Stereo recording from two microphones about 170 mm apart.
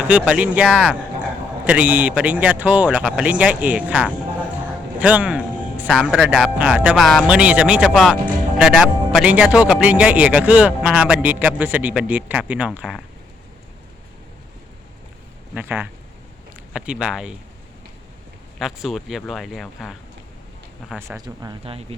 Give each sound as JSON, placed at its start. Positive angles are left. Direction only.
{"t": 0.1, "sound": "a man's voice", "side_deg": -10}
{"t": 15.5, "sound": "a man's voice", "side_deg": -10}
{"t": 18.6, "sound": "speech", "side_deg": 0}
{"t": 21.2, "sound": "speech", "side_deg": -20}
{"t": 21.6, "sound": "speech", "side_deg": -35}